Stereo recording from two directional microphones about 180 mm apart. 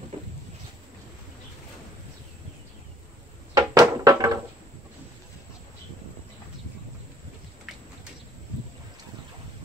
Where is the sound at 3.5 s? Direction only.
20° right (ahead or behind).